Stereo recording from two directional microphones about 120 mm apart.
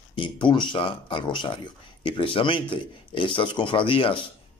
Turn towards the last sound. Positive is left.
turn(degrees=45)  # may be behind; listen again after turning